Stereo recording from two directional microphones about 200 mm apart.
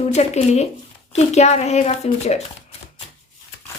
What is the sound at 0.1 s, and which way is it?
Speech, 35° left (ahead or behind).